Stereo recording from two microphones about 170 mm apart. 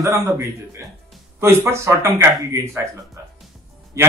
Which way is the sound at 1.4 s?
15° right (ahead or behind).